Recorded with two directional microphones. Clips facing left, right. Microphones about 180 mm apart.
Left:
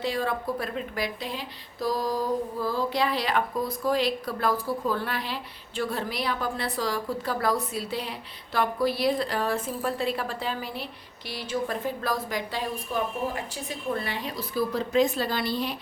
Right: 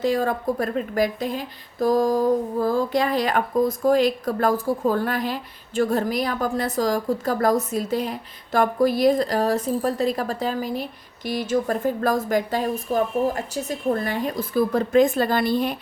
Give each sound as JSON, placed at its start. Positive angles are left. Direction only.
{"t": 0.0, "sound": "a woman's voice", "side_deg": -45}